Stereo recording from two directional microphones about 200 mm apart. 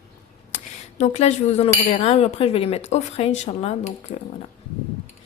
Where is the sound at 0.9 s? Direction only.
35° left (ahead or behind).